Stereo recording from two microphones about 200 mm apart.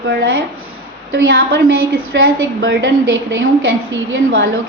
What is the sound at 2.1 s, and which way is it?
Speech, 60° right (ahead or behind).